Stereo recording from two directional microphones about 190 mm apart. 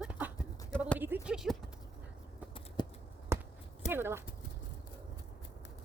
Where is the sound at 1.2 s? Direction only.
Centre (ahead or behind).